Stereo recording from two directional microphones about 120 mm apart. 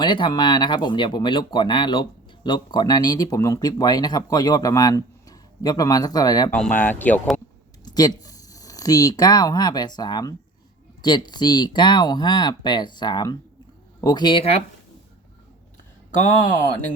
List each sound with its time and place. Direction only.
0.0 s speech: 40° left (ahead or behind)
6.5 s speech: 10° left (ahead or behind)
7.9 s speech: 30° left (ahead or behind)